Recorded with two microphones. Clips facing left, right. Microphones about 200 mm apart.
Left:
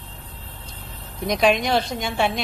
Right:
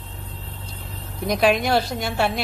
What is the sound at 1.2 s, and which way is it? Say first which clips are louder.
A woman's voice: even; 5° right (ahead or behind).